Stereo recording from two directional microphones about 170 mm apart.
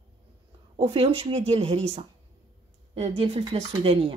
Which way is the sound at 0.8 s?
35° right (ahead or behind).